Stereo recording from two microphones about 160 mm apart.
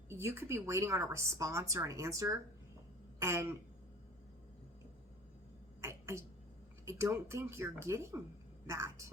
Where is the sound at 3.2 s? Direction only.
15° right (ahead or behind).